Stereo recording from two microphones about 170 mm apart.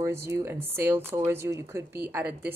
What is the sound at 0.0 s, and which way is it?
Speech, 15° right (ahead or behind).